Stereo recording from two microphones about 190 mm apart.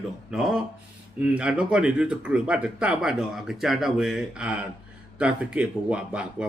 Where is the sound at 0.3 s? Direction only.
Centre (ahead or behind).